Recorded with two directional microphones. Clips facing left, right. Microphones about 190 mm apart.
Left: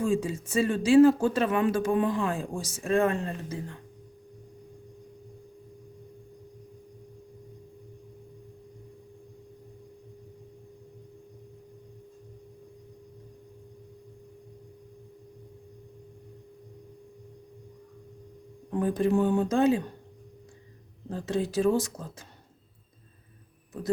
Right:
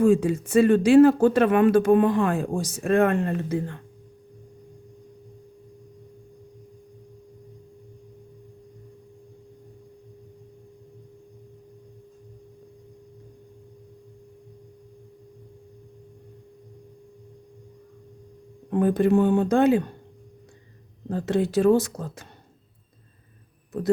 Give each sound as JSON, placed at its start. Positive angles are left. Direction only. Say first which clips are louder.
{"t": 0.0, "sound": "speech", "louder": "right 8 dB", "side_deg": -60}
{"t": 18.7, "sound": "speech", "louder": "right 5 dB", "side_deg": -65}
{"t": 21.1, "sound": "speech", "louder": "right 6 dB", "side_deg": -65}
{"t": 23.7, "sound": "speech", "louder": "right 8 dB", "side_deg": -60}